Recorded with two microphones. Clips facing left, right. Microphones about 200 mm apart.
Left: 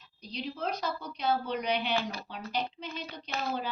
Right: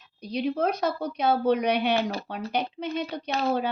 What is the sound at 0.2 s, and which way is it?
A woman's voice, 60° right (ahead or behind).